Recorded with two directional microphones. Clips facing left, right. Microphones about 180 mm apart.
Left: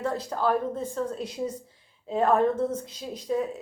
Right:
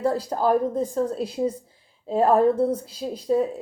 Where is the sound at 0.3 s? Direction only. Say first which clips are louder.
Right 4 dB; 40° right (ahead or behind).